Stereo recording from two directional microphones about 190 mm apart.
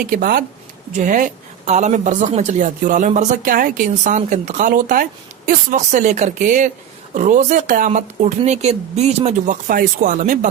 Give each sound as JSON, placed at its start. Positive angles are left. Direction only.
{"t": 0.0, "sound": "speech", "side_deg": -50}